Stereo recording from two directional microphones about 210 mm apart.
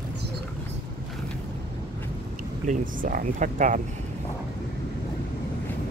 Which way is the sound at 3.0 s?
40° right (ahead or behind).